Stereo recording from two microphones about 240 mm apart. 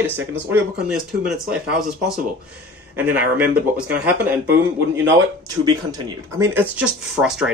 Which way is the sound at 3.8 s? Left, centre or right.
Centre.